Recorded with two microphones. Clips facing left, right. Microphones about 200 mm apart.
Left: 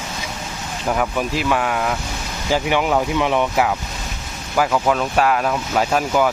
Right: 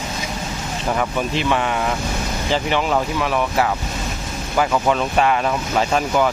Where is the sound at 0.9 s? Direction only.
5° left (ahead or behind).